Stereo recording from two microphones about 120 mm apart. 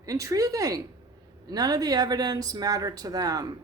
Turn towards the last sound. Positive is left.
turn(degrees=-30)  # may be behind; listen again after turning